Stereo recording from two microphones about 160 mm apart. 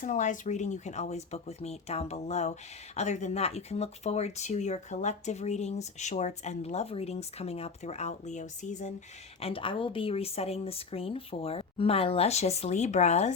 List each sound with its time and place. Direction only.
0.0 s speech: 50° left (ahead or behind)
9.4 s speech: 35° left (ahead or behind)